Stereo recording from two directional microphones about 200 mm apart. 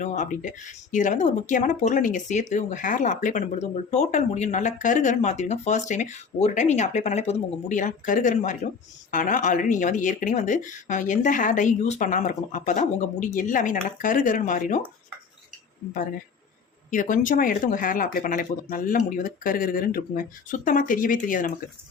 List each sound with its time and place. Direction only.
0.0 s speech: 40° left (ahead or behind)
16.9 s speech: 40° left (ahead or behind)